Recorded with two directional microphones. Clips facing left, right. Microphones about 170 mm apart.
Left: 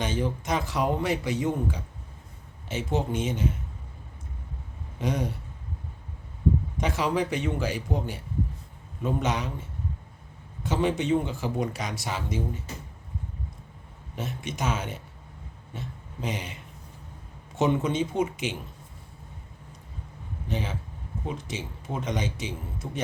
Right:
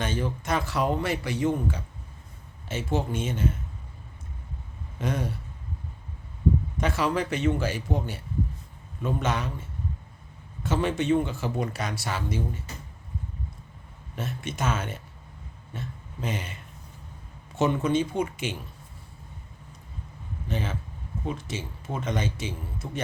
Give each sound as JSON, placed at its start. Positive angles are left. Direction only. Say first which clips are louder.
{"t": 0.0, "sound": "speech", "louder": "left 1 dB", "side_deg": 15}
{"t": 4.9, "sound": "speech", "louder": "left 1 dB", "side_deg": 15}
{"t": 6.7, "sound": "speech", "louder": "even", "side_deg": 15}
{"t": 10.6, "sound": "speech", "louder": "even", "side_deg": 15}
{"t": 14.2, "sound": "speech", "louder": "even", "side_deg": 15}
{"t": 20.5, "sound": "speech", "louder": "even", "side_deg": 15}